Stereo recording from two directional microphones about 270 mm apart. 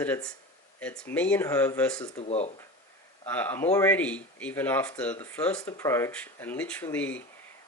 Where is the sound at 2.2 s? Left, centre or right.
Left.